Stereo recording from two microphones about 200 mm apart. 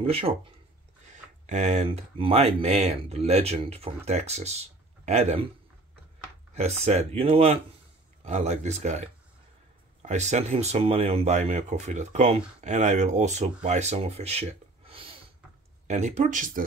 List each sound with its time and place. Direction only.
0.0 s speech: 30° right (ahead or behind)
1.4 s speech: 35° right (ahead or behind)
6.5 s speech: 35° right (ahead or behind)